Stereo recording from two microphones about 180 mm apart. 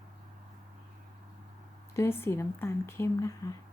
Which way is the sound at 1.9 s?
15° left (ahead or behind).